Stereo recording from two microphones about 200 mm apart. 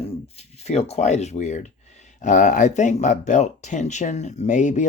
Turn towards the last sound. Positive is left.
turn(degrees=40)  # may be behind; listen again after turning